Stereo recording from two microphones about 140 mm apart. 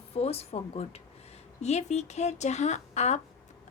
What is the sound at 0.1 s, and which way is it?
A woman's voice, 45° left (ahead or behind).